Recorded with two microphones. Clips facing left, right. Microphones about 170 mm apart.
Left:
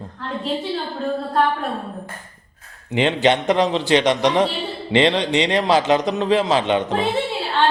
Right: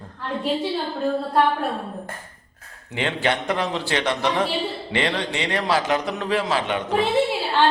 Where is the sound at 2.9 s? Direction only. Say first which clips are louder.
Left 6 dB; 20° left (ahead or behind).